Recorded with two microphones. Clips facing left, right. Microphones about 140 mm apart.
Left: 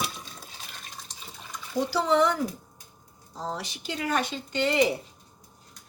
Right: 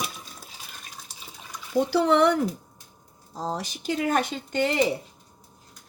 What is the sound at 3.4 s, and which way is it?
Speech, 40° right (ahead or behind).